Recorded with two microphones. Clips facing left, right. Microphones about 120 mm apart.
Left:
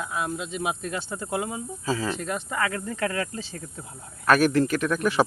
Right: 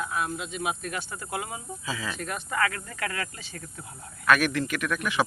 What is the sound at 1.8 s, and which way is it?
Speech, 35° left (ahead or behind).